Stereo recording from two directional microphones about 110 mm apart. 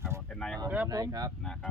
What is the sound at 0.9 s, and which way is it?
Speech, 35° right (ahead or behind).